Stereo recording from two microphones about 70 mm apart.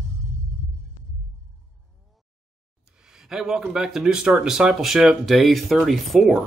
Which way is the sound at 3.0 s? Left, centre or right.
Centre.